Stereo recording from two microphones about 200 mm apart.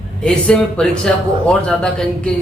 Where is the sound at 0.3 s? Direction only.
5° left (ahead or behind).